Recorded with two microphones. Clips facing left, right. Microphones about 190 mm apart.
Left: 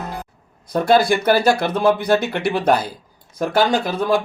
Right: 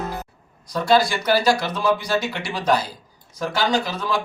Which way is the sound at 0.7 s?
55° left (ahead or behind).